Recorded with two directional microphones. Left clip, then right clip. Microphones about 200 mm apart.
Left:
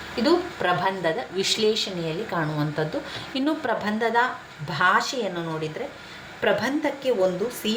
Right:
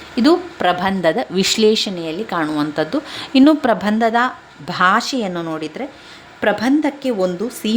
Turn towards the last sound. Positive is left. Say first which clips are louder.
# right 3 dB
turn(degrees=-55)  # may be behind; listen again after turning